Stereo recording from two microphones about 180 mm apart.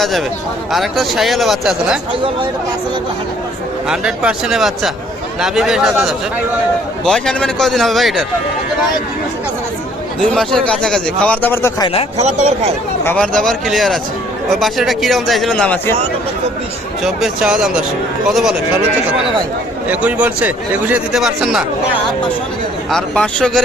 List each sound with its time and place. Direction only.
0.7 s speech: centre (ahead or behind)
3.8 s speech: 5° right (ahead or behind)
10.3 s a man's voice: 5° left (ahead or behind)
12.1 s speech: 35° right (ahead or behind)
13.1 s speech: 5° left (ahead or behind)
17.0 s speech: centre (ahead or behind)
19.9 s speech: 5° right (ahead or behind)
22.9 s speech: 5° left (ahead or behind)